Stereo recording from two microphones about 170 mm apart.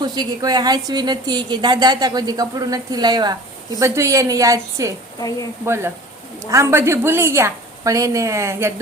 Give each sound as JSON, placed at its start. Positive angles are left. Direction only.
{"t": 0.0, "sound": "a woman's voice", "side_deg": -25}
{"t": 5.2, "sound": "speech", "side_deg": 25}
{"t": 5.6, "sound": "a woman's voice", "side_deg": -15}